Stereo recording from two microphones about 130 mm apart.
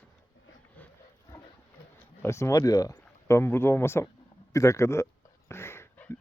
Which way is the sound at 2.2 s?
20° left (ahead or behind).